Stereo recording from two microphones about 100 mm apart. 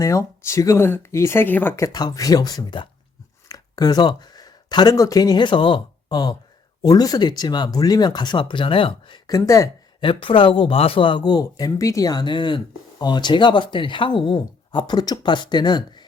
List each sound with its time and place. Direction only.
0.0 s speech: 30° left (ahead or behind)
1.7 s speech: 30° left (ahead or behind)
3.5 s a sound: 40° left (ahead or behind)
4.9 s speech: 35° left (ahead or behind)
10.0 s speech: 60° left (ahead or behind)